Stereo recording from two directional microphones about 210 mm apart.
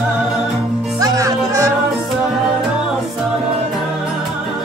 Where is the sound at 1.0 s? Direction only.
15° right (ahead or behind).